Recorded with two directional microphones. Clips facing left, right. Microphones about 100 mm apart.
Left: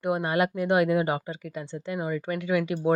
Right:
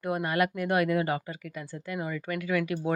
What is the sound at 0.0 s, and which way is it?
Speech, 25° left (ahead or behind).